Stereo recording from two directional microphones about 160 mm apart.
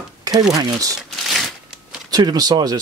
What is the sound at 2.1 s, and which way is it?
Speech, 25° right (ahead or behind).